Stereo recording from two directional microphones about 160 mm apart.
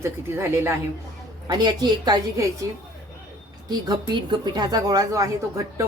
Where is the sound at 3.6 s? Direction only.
25° right (ahead or behind).